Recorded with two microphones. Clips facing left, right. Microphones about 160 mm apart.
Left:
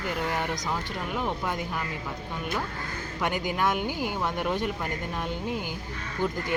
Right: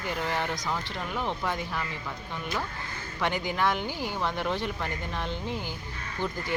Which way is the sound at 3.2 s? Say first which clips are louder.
Even; 5° left (ahead or behind).